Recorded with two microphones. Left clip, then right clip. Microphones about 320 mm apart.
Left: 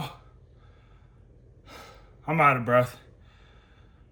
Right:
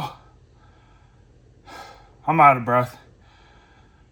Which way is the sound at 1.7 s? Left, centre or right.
Centre.